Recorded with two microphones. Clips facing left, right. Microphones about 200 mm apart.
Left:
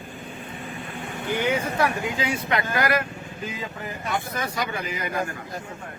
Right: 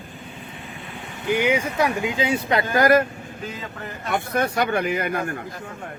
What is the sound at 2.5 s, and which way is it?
Speech, 40° right (ahead or behind).